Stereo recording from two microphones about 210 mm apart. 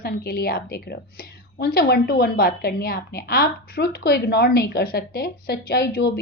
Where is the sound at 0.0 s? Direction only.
45° left (ahead or behind).